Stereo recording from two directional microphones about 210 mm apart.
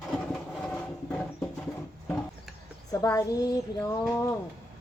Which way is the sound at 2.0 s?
5° left (ahead or behind).